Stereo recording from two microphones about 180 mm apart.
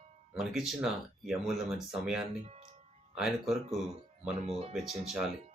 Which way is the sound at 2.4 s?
35° right (ahead or behind).